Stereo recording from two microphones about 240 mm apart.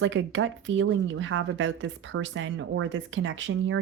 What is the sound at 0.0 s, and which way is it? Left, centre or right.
Speech, right.